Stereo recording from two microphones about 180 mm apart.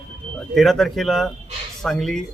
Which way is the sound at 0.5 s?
Centre (ahead or behind).